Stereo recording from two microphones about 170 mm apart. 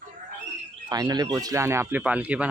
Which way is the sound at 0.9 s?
20° right (ahead or behind).